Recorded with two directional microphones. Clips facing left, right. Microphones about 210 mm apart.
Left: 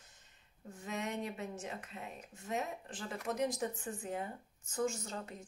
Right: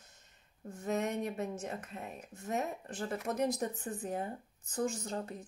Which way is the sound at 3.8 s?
35° right (ahead or behind).